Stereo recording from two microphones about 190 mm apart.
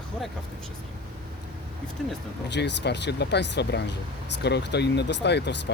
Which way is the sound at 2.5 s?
65° left (ahead or behind).